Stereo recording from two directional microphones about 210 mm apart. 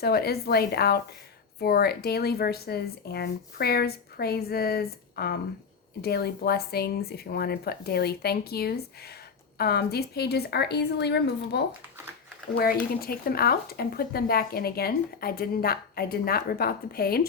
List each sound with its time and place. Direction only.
0.0 s speech: 50° left (ahead or behind)
13.0 s speech: 45° left (ahead or behind)